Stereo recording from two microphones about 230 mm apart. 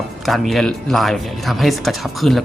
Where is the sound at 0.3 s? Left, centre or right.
Centre.